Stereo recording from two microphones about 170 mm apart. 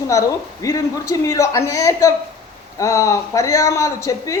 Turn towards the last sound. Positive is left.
turn(degrees=20)  # may be behind; listen again after turning